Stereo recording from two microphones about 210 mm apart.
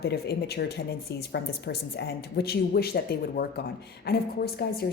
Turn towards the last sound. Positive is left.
turn(degrees=50)  # may be behind; listen again after turning